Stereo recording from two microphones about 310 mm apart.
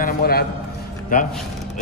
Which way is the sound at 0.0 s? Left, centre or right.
Left.